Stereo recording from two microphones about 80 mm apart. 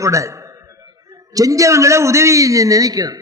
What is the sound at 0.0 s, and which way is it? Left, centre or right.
A man's voice, right.